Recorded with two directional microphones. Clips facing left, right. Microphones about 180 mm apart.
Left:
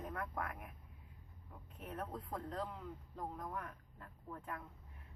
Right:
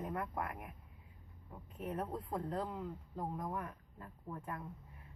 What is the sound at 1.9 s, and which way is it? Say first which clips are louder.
Speech: right 5 dB; 10° right (ahead or behind).